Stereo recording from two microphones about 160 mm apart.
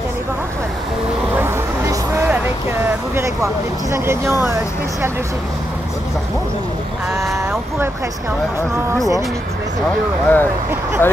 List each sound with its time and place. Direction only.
1.3 s vehicle: 15° right (ahead or behind)
3.9 s speech: 15° right (ahead or behind)
10.2 s speech: 10° left (ahead or behind)